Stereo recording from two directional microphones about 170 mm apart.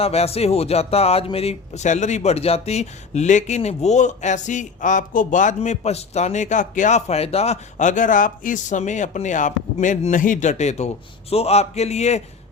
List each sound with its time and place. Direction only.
0.0 s speech: 35° left (ahead or behind)